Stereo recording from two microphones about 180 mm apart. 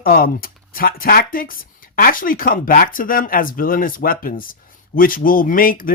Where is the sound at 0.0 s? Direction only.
55° left (ahead or behind).